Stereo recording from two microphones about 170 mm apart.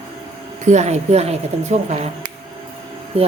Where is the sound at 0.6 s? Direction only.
40° right (ahead or behind).